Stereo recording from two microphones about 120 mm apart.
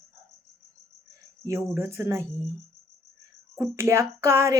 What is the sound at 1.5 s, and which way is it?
Speech, 25° right (ahead or behind).